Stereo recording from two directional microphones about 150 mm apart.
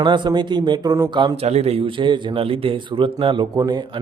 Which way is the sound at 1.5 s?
45° right (ahead or behind).